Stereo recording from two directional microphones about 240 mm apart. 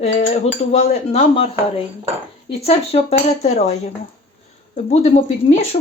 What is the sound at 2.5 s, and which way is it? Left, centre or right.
Cutlery, left.